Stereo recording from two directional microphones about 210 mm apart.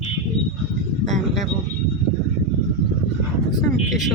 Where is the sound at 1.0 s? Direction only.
35° right (ahead or behind).